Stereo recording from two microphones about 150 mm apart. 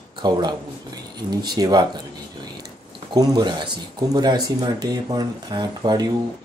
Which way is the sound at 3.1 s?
30° right (ahead or behind).